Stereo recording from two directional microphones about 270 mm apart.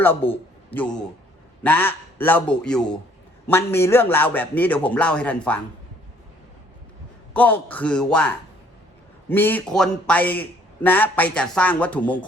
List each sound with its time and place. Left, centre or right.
0.1 s a man's voice: left
0.7 s a man's voice: centre
7.3 s a man's voice: centre
9.3 s a man's voice: centre